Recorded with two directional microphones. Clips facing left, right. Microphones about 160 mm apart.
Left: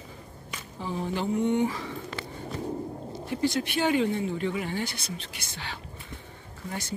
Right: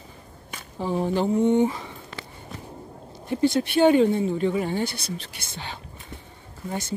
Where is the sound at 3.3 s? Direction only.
25° right (ahead or behind).